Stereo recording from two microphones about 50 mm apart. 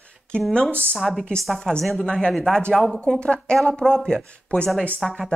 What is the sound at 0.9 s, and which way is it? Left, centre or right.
Speech, centre.